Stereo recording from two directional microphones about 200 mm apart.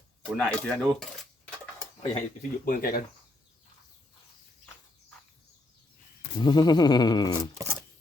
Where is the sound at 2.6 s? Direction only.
45° left (ahead or behind).